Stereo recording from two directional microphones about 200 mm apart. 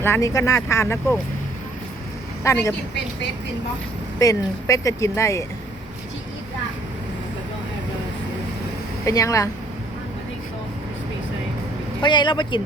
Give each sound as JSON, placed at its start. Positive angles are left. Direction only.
{"t": 0.0, "sound": "speech", "side_deg": 15}
{"t": 2.4, "sound": "speech", "side_deg": 15}
{"t": 4.2, "sound": "speech", "side_deg": 15}
{"t": 9.0, "sound": "speech", "side_deg": 15}
{"t": 12.0, "sound": "speech", "side_deg": 25}